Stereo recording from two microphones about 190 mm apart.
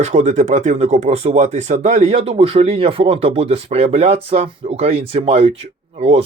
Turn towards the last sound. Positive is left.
turn(degrees=-30)  # may be behind; listen again after turning